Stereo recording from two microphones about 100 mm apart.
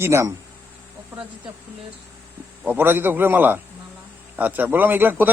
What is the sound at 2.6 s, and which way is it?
A man's voice, 20° right (ahead or behind).